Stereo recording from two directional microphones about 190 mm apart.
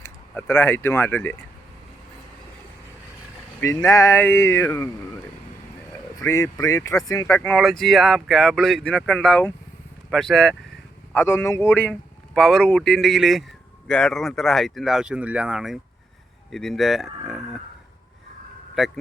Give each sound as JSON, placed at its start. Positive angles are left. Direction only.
{"t": 0.0, "sound": "speech", "side_deg": 10}
{"t": 3.6, "sound": "speech", "side_deg": 15}
{"t": 6.2, "sound": "speech", "side_deg": 15}
{"t": 18.8, "sound": "speech", "side_deg": 0}